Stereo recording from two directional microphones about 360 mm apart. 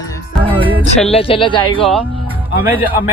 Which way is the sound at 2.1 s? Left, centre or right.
Centre.